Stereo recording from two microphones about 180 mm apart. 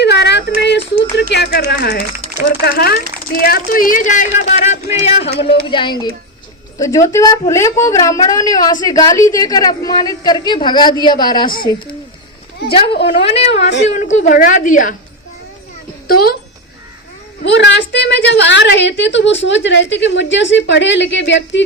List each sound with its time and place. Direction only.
0.0 s a woman's voice: 70° left (ahead or behind); by 11.8 s 20° left (ahead or behind)
13.0 s a woman's voice: 35° left (ahead or behind)
16.0 s speech: 55° left (ahead or behind)
17.4 s a woman's voice: 80° left